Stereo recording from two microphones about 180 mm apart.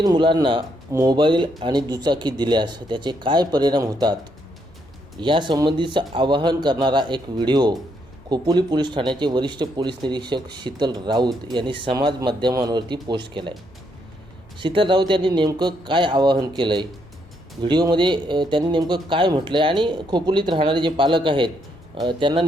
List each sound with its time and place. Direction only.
0.0 s speech: 25° right (ahead or behind)
5.2 s speech: 25° right (ahead or behind)
14.6 s speech: 30° right (ahead or behind)